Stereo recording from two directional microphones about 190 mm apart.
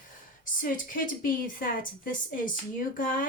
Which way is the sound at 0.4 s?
45° left (ahead or behind).